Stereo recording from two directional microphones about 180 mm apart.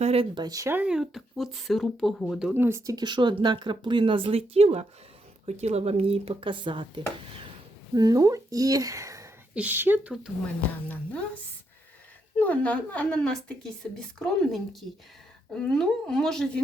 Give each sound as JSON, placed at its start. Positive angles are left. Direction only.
{"t": 0.0, "sound": "speech", "side_deg": -35}
{"t": 2.5, "sound": "speech", "side_deg": -10}
{"t": 12.4, "sound": "a woman's voice", "side_deg": 10}